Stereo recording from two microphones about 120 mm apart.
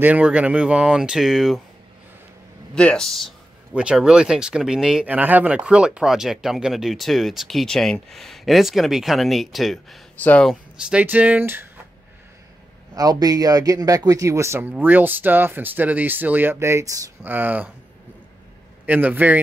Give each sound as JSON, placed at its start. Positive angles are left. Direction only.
{"t": 0.0, "sound": "speech", "side_deg": -10}
{"t": 2.7, "sound": "speech", "side_deg": 10}
{"t": 10.2, "sound": "speech", "side_deg": 10}
{"t": 10.5, "sound": "speech", "side_deg": -10}
{"t": 12.9, "sound": "speech", "side_deg": -30}
{"t": 17.2, "sound": "speech", "side_deg": -15}
{"t": 18.9, "sound": "speech", "side_deg": -15}